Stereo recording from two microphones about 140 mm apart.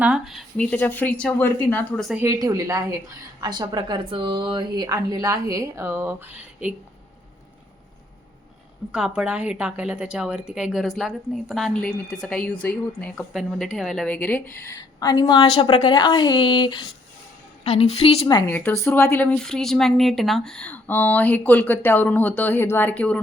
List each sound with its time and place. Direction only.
0.0 s speech: 5° right (ahead or behind)
0.5 s speech: 5° left (ahead or behind)
2.2 s a woman's voice: 25° right (ahead or behind)
8.9 s a woman's voice: 10° right (ahead or behind); by 14.7 s 10° left (ahead or behind)
14.7 s a woman's voice: 25° left (ahead or behind)
17.6 s a woman's voice: 45° left (ahead or behind)
18.4 s speech: 15° left (ahead or behind)